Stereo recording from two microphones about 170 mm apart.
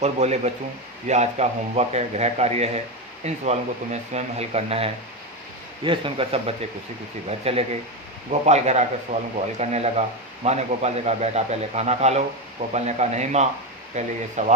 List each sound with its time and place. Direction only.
0.0 s a man's voice: 40° right (ahead or behind)